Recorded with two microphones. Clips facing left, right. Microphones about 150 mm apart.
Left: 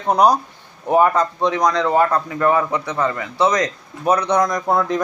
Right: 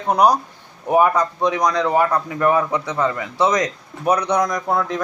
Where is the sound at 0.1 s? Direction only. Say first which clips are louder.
Left 1 dB; 10° right (ahead or behind).